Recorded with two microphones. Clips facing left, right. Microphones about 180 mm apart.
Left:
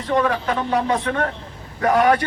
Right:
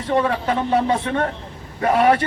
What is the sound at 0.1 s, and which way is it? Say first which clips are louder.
A man's voice: even; 25° right (ahead or behind).